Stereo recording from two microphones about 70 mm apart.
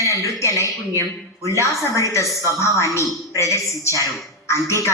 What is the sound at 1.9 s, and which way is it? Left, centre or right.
Speech, left.